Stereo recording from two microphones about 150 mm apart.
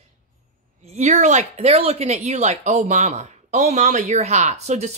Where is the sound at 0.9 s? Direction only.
50° right (ahead or behind).